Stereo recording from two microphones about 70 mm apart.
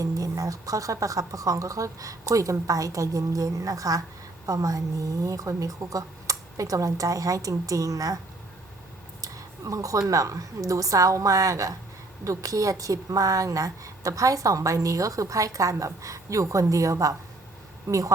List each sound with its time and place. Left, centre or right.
0.0 s a woman's voice: right
9.2 s a sound: right
10.1 s a woman's voice: right